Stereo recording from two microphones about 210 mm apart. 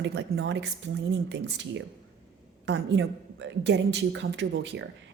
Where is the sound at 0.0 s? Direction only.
55° right (ahead or behind).